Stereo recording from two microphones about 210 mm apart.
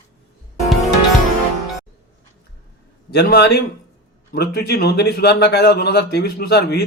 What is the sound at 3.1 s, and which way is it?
A man's voice, 50° left (ahead or behind).